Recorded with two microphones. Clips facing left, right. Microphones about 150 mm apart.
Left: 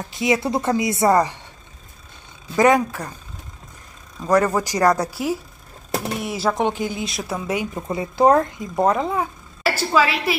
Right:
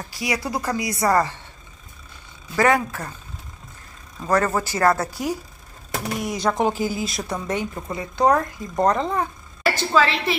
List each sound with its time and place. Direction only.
0.1 s a woman's voice: 20° left (ahead or behind)
2.5 s speech: 20° left (ahead or behind)
4.3 s speech: 10° left (ahead or behind)
7.9 s a woman's voice: 25° left (ahead or behind)
8.7 s a woman's voice: 5° left (ahead or behind)